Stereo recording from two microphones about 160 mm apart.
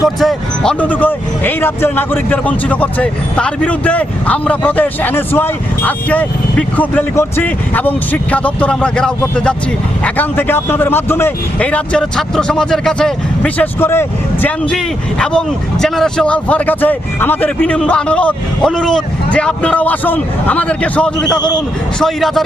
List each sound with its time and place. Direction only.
0.0 s speech: centre (ahead or behind)
21.2 s a man's voice: 25° left (ahead or behind)
22.0 s a man's voice: centre (ahead or behind)